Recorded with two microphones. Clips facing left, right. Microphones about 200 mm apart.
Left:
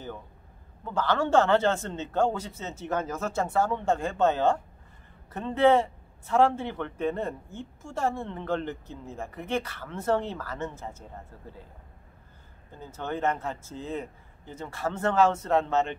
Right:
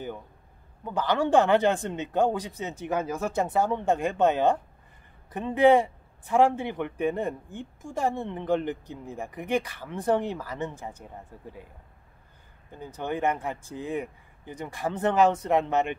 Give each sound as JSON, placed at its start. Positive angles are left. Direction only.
{"t": 0.8, "sound": "a man's voice", "side_deg": -15}
{"t": 12.7, "sound": "a man's voice", "side_deg": -15}